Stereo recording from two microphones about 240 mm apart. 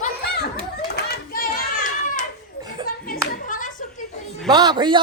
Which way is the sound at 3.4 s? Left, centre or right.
Left.